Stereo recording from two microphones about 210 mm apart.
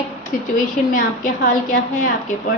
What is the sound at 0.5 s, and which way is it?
A woman's voice, 40° left (ahead or behind).